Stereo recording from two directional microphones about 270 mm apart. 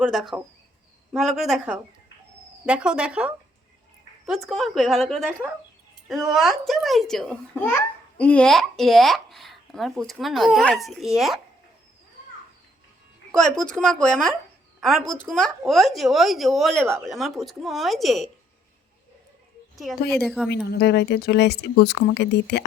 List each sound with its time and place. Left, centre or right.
0.0 s speech: centre
13.4 s speech: centre
19.7 s speech: centre
20.7 s speech: left